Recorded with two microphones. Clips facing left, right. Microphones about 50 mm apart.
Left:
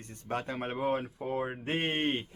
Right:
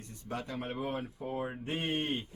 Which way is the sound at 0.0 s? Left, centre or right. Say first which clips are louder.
Left 4 dB; left.